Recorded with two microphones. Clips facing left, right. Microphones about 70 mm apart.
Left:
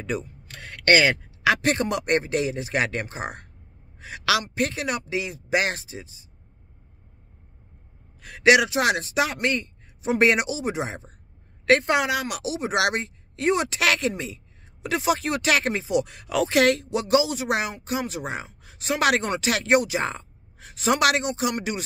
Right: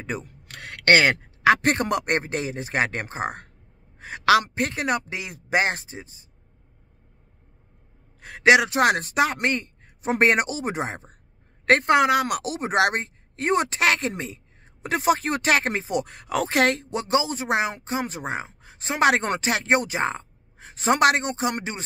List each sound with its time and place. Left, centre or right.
0.2 s a man's voice: right
8.2 s a man's voice: right
8.6 s a man's voice: right